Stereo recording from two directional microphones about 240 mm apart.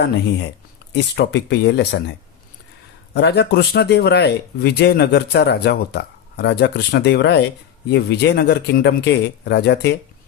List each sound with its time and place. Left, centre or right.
0.9 s speech: left
3.2 s speech: left